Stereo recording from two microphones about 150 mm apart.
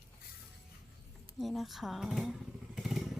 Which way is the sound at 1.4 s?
Centre (ahead or behind).